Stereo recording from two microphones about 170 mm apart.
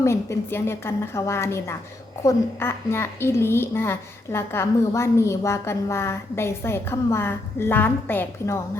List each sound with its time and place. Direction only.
0.0 s a woman's voice: 15° left (ahead or behind)